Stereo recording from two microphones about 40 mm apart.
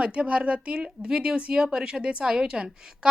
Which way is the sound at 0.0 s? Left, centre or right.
Right.